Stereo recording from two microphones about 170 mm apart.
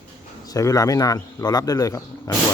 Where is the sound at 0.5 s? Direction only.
20° left (ahead or behind).